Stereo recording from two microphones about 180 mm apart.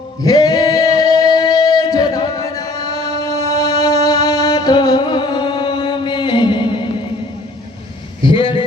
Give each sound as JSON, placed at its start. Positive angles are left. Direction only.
{"t": 0.2, "sound": "male singing", "side_deg": 20}
{"t": 1.2, "sound": "music", "side_deg": 20}
{"t": 2.6, "sound": "a sound", "side_deg": 20}
{"t": 3.0, "sound": "music", "side_deg": -35}
{"t": 3.5, "sound": "music", "side_deg": 20}
{"t": 8.2, "sound": "vehicle", "side_deg": 30}